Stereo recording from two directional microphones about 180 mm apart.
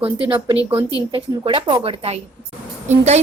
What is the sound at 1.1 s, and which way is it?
A woman's voice, 25° right (ahead or behind).